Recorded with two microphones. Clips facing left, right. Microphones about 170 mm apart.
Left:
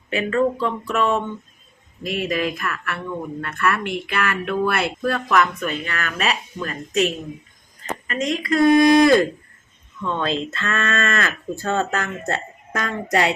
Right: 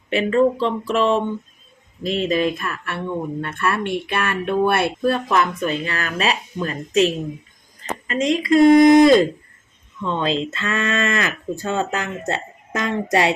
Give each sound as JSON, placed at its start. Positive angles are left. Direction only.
{"t": 0.1, "sound": "speech", "side_deg": -30}